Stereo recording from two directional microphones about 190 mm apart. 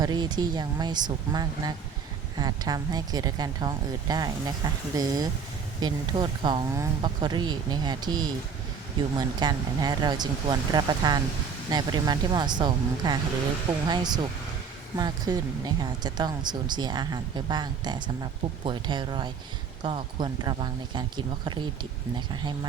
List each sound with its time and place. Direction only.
0.0 s speech: 20° right (ahead or behind)